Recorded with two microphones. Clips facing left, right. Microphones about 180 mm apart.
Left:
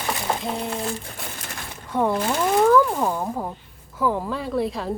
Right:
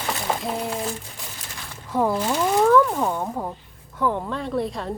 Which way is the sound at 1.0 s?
60° left (ahead or behind).